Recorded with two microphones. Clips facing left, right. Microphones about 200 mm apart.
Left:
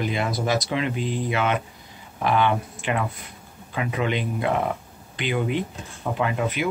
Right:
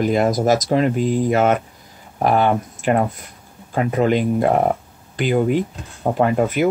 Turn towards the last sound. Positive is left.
turn(degrees=-45)  # may be behind; listen again after turning